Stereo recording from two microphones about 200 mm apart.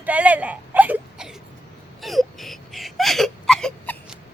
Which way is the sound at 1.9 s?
Centre (ahead or behind).